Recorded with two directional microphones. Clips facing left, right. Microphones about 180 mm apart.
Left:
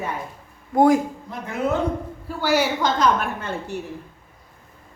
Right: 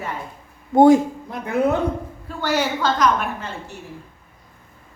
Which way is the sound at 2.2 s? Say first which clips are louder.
Left 1 dB; 10° left (ahead or behind).